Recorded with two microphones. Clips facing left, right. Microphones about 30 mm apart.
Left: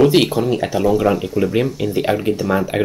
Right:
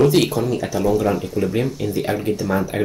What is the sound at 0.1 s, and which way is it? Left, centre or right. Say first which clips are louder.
Speech: left 3 dB; left.